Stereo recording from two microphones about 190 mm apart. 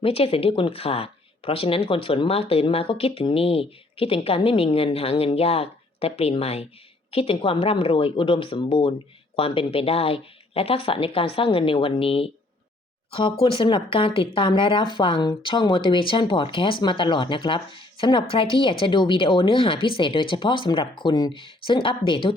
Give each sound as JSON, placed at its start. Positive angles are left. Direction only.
{"t": 0.0, "sound": "speech", "side_deg": 30}
{"t": 13.6, "sound": "speech", "side_deg": 25}